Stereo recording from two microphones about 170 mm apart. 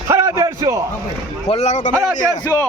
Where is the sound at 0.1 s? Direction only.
20° right (ahead or behind).